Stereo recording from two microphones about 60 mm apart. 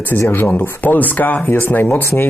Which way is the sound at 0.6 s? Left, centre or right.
Left.